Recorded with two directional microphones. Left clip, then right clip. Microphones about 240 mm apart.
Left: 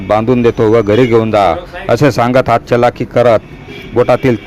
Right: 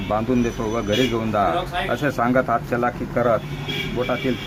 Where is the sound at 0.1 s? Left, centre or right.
Left.